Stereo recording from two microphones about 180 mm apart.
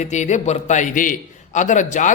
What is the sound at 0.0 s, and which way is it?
A man's voice, 40° left (ahead or behind).